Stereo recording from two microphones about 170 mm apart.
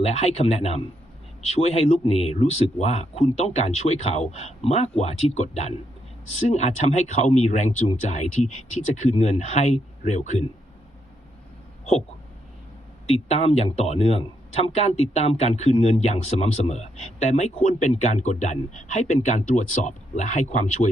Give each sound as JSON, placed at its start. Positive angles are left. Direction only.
{"t": 0.0, "sound": "speech", "side_deg": 40}
{"t": 13.1, "sound": "speech", "side_deg": 40}